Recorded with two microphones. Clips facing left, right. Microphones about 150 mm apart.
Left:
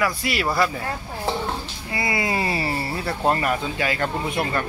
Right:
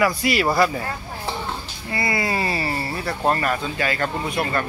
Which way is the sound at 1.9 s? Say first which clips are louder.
Right 1 dB; 10° left (ahead or behind).